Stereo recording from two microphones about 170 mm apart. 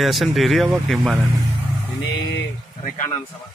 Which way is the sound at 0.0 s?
Centre (ahead or behind).